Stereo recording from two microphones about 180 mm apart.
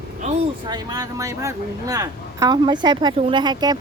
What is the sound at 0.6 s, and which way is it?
Speech, 20° right (ahead or behind).